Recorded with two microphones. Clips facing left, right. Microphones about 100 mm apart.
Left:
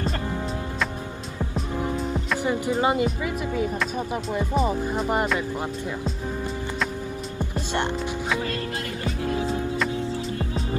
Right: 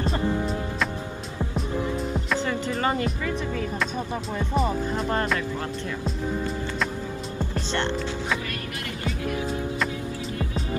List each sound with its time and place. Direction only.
2.1 s music: 10° left (ahead or behind)
2.7 s speech: 10° left (ahead or behind)
9.0 s music: 30° left (ahead or behind)